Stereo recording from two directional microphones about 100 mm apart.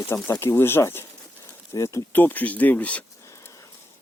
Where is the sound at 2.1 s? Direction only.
15° left (ahead or behind).